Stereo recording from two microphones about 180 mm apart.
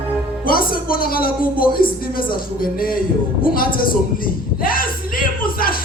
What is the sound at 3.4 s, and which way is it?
Speech, 55° left (ahead or behind).